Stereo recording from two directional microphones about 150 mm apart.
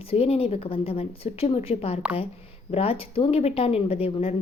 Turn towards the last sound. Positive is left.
turn(degrees=40)  # may be behind; listen again after turning